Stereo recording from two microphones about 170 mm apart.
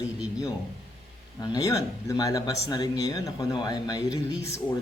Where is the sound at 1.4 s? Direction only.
20° left (ahead or behind).